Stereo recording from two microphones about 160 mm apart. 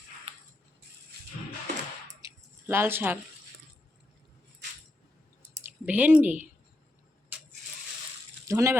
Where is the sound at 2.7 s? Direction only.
15° right (ahead or behind).